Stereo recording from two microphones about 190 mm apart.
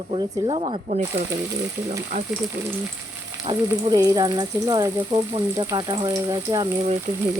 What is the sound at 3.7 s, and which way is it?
Speech, 20° right (ahead or behind).